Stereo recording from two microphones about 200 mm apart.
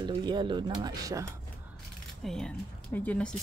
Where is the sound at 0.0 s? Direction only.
20° right (ahead or behind).